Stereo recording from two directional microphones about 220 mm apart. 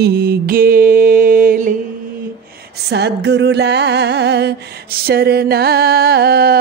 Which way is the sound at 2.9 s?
50° right (ahead or behind).